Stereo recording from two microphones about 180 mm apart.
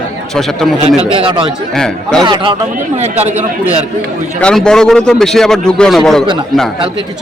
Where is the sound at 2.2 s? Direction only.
25° right (ahead or behind).